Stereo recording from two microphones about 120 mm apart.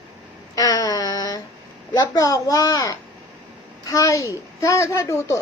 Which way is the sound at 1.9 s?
30° left (ahead or behind).